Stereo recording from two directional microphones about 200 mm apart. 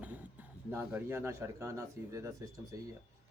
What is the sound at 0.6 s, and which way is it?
Speech, 10° right (ahead or behind).